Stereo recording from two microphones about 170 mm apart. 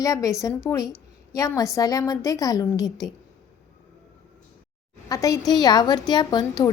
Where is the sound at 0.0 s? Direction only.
20° left (ahead or behind).